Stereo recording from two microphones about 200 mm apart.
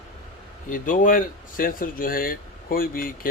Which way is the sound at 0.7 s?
40° left (ahead or behind).